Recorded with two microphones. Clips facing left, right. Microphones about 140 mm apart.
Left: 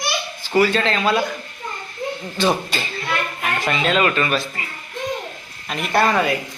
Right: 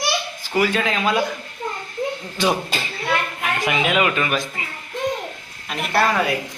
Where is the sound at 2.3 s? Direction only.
10° right (ahead or behind).